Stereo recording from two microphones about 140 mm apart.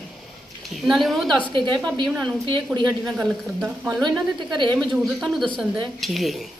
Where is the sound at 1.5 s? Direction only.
35° right (ahead or behind).